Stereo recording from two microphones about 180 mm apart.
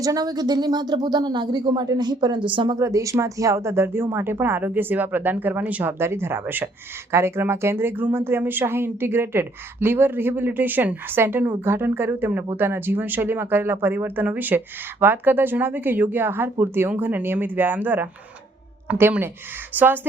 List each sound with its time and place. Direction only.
0.0 s speech: 20° right (ahead or behind)
2.7 s a woman's voice: 15° right (ahead or behind)